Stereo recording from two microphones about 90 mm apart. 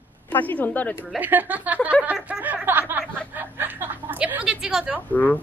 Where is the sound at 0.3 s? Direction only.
20° left (ahead or behind).